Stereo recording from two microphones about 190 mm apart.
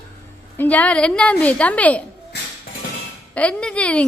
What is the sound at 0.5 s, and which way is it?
A woman's voice, 10° left (ahead or behind).